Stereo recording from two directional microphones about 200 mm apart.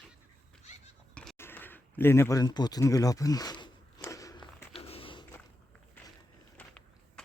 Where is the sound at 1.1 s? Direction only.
10° left (ahead or behind); by 5.2 s 25° left (ahead or behind).